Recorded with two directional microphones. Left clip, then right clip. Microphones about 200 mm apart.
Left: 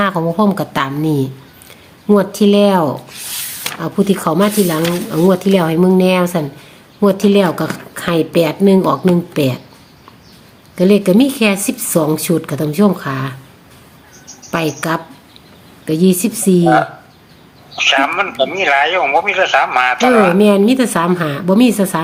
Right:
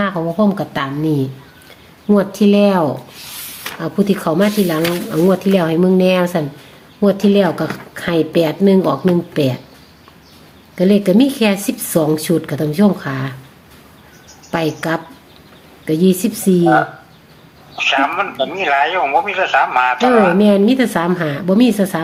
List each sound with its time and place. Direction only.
0.0 s speech: 20° left (ahead or behind)
10.8 s speech: 10° left (ahead or behind)
14.5 s speech: 10° left (ahead or behind)
17.7 s speech: 30° left (ahead or behind)
20.4 s speech: 10° left (ahead or behind)